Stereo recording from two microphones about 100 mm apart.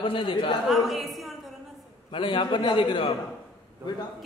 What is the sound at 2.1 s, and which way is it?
A man's voice, 60° left (ahead or behind).